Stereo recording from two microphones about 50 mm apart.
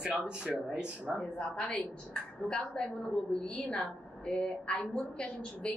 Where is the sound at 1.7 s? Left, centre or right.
Centre.